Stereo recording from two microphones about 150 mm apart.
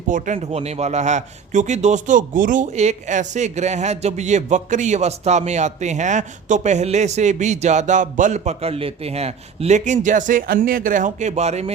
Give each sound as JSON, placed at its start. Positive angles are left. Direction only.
{"t": 0.1, "sound": "speech", "side_deg": -60}
{"t": 0.3, "sound": "a man's voice", "side_deg": -45}